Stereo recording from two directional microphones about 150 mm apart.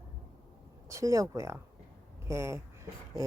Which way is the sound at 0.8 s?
20° right (ahead or behind).